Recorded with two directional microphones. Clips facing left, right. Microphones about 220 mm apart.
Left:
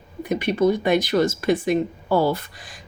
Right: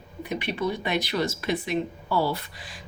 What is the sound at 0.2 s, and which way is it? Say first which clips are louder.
Speech: left 8 dB; 45° left (ahead or behind).